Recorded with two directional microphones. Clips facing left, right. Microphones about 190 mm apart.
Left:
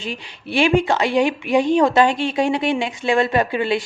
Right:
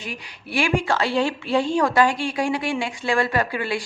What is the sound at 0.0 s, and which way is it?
A woman's voice, 25° left (ahead or behind).